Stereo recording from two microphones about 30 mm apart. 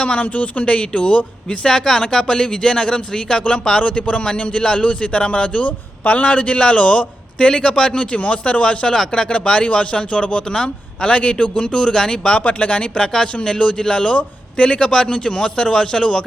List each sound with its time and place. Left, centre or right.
0.2 s speech: left
0.6 s a man's voice: left
1.6 s a man's voice: centre
4.8 s a man's voice: left
5.6 s a man's voice: left
7.9 s a man's voice: left
12.5 s speech: left
13.0 s speech: left
14.1 s a man's voice: left